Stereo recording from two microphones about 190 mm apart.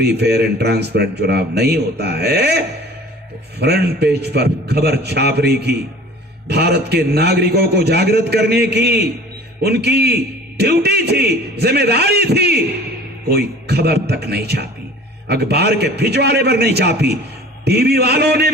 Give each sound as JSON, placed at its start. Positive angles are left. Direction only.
{"t": 0.0, "sound": "a man's voice", "side_deg": -60}